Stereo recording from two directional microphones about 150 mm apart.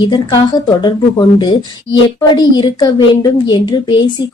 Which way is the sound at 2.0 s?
30° left (ahead or behind).